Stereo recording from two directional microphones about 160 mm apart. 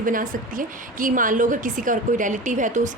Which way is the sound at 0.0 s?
60° right (ahead or behind).